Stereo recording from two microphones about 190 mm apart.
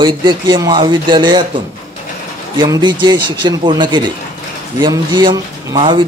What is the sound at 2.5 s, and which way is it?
Speech, 25° right (ahead or behind).